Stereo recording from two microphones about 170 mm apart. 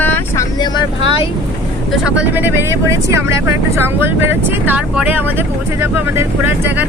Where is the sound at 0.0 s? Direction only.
10° left (ahead or behind).